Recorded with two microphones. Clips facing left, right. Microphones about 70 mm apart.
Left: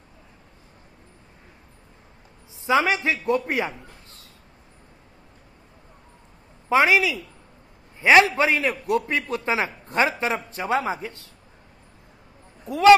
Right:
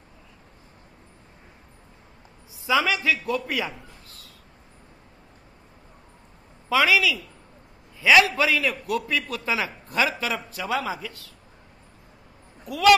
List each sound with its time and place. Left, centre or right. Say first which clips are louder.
2.6 s a man's voice: left 2 dB; left
3.7 s a sound: left 1 dB; left
6.7 s a man's voice: left 2 dB; left
12.6 s speech: left 4 dB; left